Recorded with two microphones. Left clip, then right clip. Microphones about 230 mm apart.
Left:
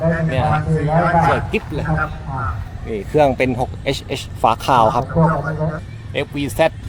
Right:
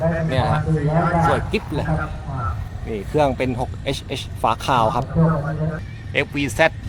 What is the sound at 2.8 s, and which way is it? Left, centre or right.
Speech, centre.